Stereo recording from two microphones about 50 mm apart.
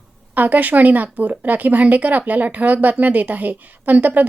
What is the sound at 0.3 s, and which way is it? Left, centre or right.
A woman's voice, right.